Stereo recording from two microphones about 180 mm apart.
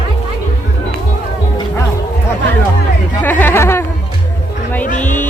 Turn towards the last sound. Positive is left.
turn(degrees=15)  # may be behind; listen again after turning